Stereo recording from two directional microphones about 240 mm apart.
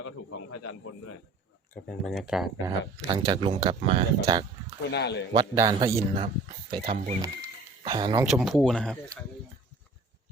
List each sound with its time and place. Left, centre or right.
0.0 s speech: left
2.0 s speech: centre
2.6 s speech: centre
4.9 s speech: left
5.3 s a man's voice: centre
8.2 s speech: centre